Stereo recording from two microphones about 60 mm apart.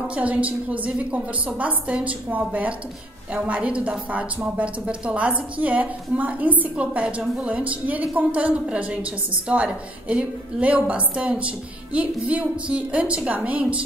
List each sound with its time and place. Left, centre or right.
0.1 s a woman's voice: right